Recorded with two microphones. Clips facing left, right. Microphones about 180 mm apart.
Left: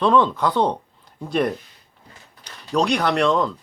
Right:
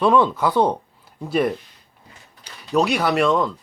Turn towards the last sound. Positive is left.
turn(degrees=0)  # may be behind; listen again after turning